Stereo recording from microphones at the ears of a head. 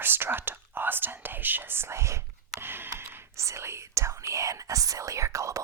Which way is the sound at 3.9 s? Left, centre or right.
Right.